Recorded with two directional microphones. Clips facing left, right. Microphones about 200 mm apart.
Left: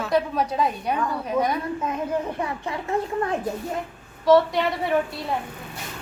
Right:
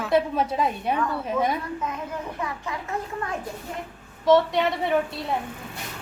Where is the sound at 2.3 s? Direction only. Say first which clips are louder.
Left 3 dB; 30° left (ahead or behind).